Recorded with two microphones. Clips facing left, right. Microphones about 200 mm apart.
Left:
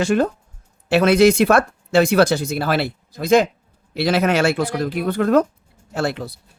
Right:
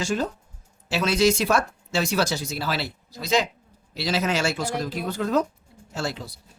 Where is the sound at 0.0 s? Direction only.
60° left (ahead or behind).